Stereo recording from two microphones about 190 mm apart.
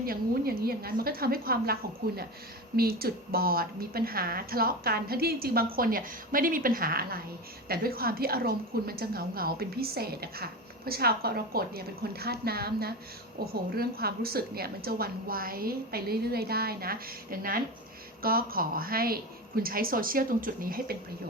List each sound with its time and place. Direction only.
0.0 s a woman's voice: 50° right (ahead or behind)